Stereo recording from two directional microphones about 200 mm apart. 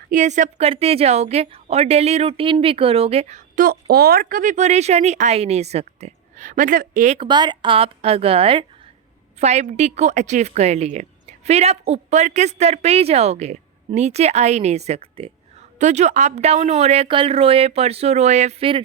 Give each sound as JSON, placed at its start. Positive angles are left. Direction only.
{"t": 0.1, "sound": "a woman's voice", "side_deg": -40}
{"t": 7.3, "sound": "a woman's voice", "side_deg": -20}